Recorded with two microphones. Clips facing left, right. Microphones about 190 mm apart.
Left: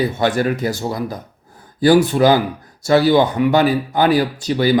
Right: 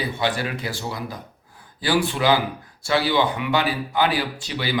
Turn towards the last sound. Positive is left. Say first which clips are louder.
# left 10 dB
turn(degrees=45)  # may be behind; listen again after turning